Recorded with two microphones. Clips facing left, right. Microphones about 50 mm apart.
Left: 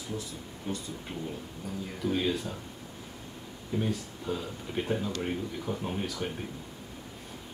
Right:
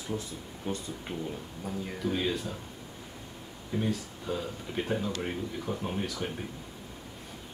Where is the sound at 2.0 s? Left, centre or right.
Centre.